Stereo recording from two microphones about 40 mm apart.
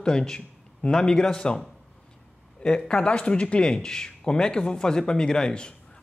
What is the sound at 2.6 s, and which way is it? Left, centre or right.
Speech, centre.